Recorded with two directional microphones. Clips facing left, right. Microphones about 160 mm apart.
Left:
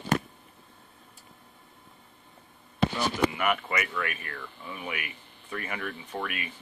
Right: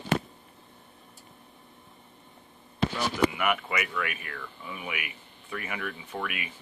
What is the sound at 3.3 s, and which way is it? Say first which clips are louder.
Speech: even; 10° right (ahead or behind).